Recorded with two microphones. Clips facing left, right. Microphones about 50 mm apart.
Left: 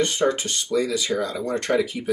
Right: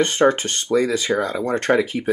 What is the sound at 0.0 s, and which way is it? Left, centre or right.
Speech, right.